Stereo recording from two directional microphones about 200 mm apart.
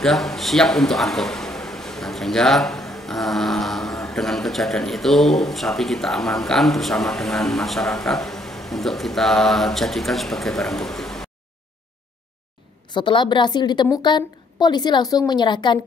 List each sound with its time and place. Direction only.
0.0 s a man's voice: centre (ahead or behind)
12.9 s a woman's voice: 25° left (ahead or behind)